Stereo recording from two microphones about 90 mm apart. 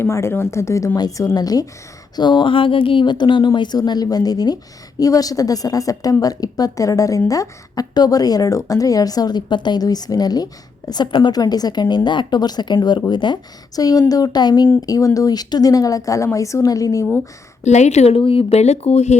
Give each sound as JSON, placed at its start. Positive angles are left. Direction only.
{"t": 0.0, "sound": "a woman's voice", "side_deg": 30}
{"t": 2.1, "sound": "a woman's voice", "side_deg": 60}
{"t": 14.8, "sound": "speech", "side_deg": 40}
{"t": 18.1, "sound": "speech", "side_deg": 90}